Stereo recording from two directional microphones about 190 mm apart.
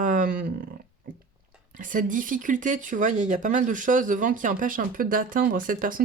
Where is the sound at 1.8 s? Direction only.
45° right (ahead or behind).